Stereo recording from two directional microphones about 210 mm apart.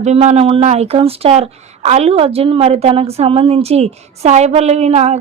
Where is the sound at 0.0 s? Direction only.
30° right (ahead or behind).